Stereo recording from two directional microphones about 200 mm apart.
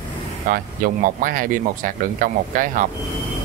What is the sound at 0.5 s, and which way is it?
Speech, 45° right (ahead or behind).